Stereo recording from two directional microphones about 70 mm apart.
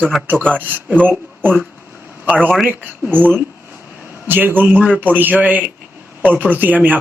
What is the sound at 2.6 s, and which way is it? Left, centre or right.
A man's voice, right.